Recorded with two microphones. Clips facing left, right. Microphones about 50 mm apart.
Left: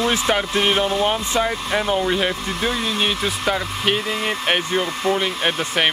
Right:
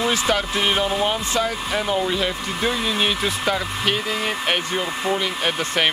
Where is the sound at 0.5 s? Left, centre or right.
Centre.